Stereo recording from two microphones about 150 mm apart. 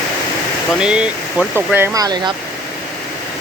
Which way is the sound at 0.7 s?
5° right (ahead or behind).